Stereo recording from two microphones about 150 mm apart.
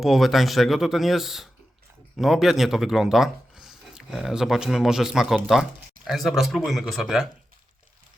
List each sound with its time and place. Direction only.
0.0 s speech: centre (ahead or behind)